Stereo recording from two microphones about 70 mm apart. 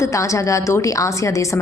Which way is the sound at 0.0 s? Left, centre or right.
Left.